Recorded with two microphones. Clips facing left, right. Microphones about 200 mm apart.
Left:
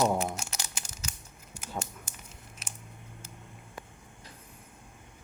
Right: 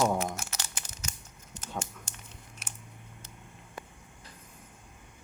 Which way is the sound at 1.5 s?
10° left (ahead or behind).